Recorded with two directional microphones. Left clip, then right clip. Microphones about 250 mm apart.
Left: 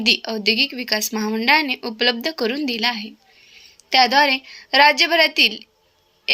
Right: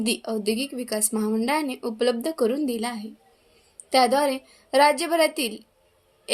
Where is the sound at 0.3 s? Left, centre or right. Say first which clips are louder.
Left 8 dB; centre.